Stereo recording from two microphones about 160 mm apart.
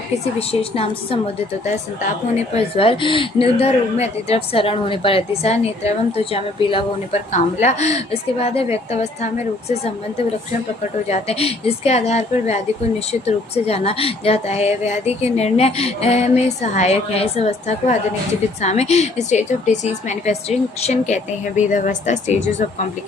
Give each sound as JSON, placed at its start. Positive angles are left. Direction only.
{"t": 0.3, "sound": "a woman's voice", "side_deg": 35}
{"t": 2.6, "sound": "a woman's voice", "side_deg": 35}
{"t": 7.3, "sound": "a woman's voice", "side_deg": 45}
{"t": 11.1, "sound": "a woman's voice", "side_deg": 40}